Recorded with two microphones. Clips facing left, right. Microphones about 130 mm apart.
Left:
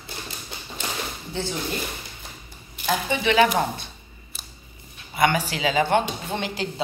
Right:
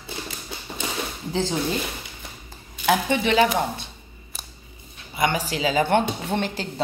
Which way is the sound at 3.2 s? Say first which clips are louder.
Left 4 dB; 35° right (ahead or behind).